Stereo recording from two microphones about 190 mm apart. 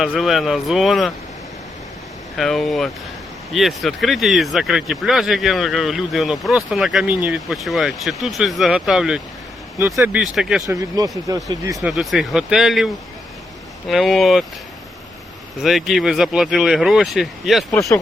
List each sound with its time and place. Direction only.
0.0 s speech: centre (ahead or behind)
2.4 s speech: centre (ahead or behind)
9.7 s speech: 15° right (ahead or behind)
10.7 s speech: 20° right (ahead or behind)
11.8 s speech: centre (ahead or behind)
15.6 s speech: centre (ahead or behind)